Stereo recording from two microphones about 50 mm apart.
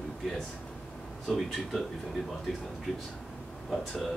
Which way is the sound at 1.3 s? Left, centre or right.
Centre.